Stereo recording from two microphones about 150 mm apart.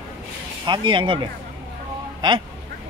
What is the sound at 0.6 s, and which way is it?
Speech, 30° right (ahead or behind).